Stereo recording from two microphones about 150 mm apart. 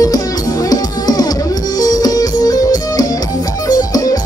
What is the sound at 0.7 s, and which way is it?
Music, 25° left (ahead or behind).